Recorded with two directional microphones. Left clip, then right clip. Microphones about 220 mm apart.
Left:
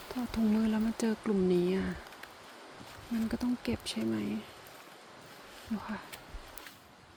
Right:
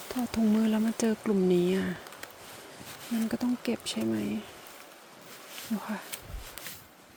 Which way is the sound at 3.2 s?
10° right (ahead or behind).